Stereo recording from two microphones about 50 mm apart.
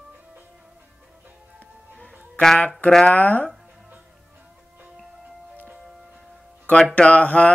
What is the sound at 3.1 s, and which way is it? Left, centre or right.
Speech, left.